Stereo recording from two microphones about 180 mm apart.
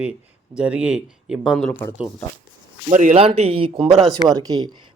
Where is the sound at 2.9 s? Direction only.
40° right (ahead or behind).